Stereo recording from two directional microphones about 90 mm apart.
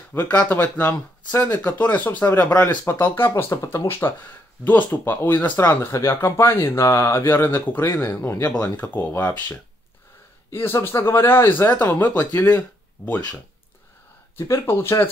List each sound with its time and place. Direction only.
0.1 s speech: 30° left (ahead or behind)
8.5 s speech: 20° left (ahead or behind)
14.5 s speech: 30° left (ahead or behind)